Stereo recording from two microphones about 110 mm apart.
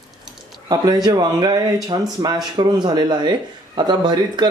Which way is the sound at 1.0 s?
40° right (ahead or behind).